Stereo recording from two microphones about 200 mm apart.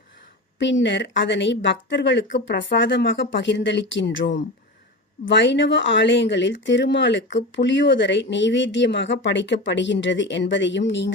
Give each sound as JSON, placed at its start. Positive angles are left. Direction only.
{"t": 0.6, "sound": "speech", "side_deg": 65}